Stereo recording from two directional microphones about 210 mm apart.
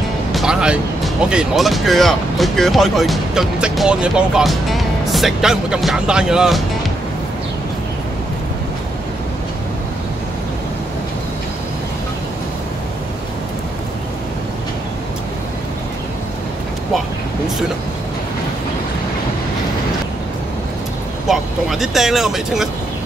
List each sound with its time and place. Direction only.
0.3 s speech: centre (ahead or behind)
21.3 s speech: centre (ahead or behind)